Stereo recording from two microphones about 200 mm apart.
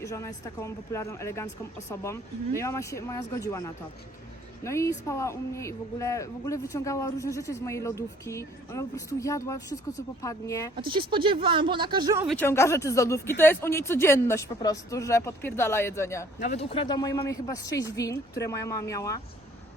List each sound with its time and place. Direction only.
0.0 s speech: 15° left (ahead or behind)
10.8 s speech: 25° right (ahead or behind)
12.4 s speech: 15° left (ahead or behind)
16.4 s speech: 35° left (ahead or behind); by 19.2 s 15° left (ahead or behind)